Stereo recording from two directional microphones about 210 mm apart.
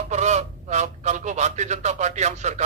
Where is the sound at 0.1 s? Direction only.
35° right (ahead or behind).